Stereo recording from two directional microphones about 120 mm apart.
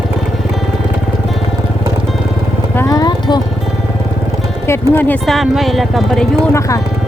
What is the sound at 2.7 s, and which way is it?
Clip-clop, 30° left (ahead or behind).